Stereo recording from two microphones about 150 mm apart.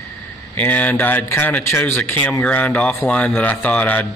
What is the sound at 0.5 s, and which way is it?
Speech, 10° left (ahead or behind).